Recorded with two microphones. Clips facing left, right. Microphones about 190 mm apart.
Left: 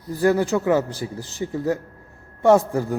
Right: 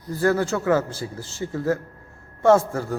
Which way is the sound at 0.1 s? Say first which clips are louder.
Left 2 dB; 15° left (ahead or behind).